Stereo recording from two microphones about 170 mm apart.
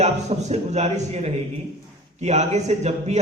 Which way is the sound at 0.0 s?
40° right (ahead or behind).